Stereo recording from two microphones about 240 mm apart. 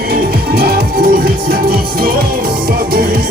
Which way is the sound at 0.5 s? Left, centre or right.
Right.